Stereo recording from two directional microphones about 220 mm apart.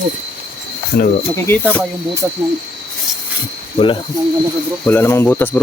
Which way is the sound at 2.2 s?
10° right (ahead or behind).